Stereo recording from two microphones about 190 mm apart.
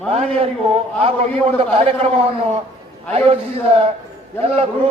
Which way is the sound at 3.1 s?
30° right (ahead or behind).